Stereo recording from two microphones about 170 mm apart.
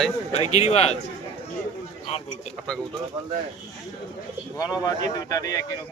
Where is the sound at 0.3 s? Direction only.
40° left (ahead or behind).